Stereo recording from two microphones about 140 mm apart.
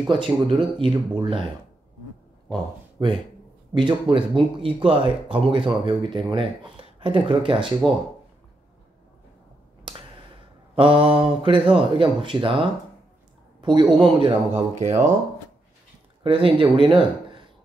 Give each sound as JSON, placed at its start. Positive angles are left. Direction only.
{"t": 0.0, "sound": "speech", "side_deg": -30}
{"t": 2.5, "sound": "speech", "side_deg": -35}
{"t": 7.8, "sound": "speech", "side_deg": 0}
{"t": 9.9, "sound": "a sound", "side_deg": -35}
{"t": 10.7, "sound": "speech", "side_deg": -40}
{"t": 13.6, "sound": "a sound", "side_deg": -35}
{"t": 13.9, "sound": "speech", "side_deg": -30}
{"t": 14.8, "sound": "speech", "side_deg": -55}
{"t": 16.2, "sound": "speech", "side_deg": -40}